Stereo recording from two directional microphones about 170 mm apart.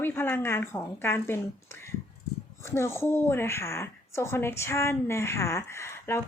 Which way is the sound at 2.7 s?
15° left (ahead or behind).